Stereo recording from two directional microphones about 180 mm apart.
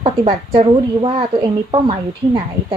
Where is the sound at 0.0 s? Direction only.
30° right (ahead or behind).